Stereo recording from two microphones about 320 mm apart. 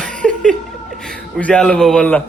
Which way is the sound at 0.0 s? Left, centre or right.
Centre.